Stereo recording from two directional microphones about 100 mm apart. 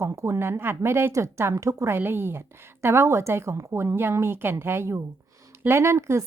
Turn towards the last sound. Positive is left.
turn(degrees=-30)  # may be behind; listen again after turning